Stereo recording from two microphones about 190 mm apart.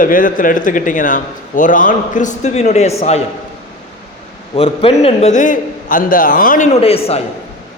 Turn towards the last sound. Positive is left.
turn(degrees=30)  # may be behind; listen again after turning